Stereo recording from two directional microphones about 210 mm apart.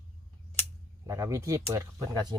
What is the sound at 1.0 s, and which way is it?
Speech, 15° right (ahead or behind).